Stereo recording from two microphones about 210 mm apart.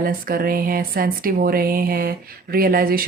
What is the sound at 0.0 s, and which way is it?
Speech, 45° right (ahead or behind).